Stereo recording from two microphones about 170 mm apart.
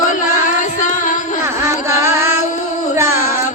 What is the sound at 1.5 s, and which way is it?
Music, 15° right (ahead or behind).